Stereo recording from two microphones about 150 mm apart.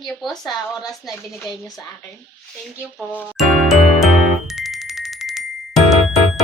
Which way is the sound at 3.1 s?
10° left (ahead or behind).